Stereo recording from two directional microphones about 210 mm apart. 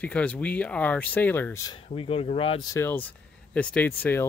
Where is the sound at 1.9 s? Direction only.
25° left (ahead or behind).